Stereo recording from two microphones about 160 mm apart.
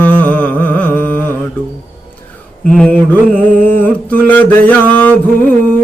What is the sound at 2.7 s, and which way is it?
Music, 10° left (ahead or behind).